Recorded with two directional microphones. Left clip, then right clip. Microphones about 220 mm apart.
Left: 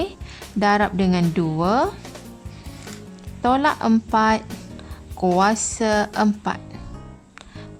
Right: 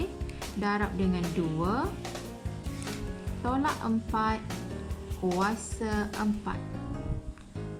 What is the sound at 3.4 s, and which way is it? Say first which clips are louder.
Speech: left 12 dB; 45° left (ahead or behind).